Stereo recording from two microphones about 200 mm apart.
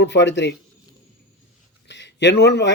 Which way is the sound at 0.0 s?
60° left (ahead or behind).